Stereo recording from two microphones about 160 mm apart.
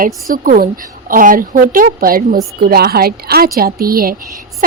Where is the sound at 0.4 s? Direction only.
60° right (ahead or behind).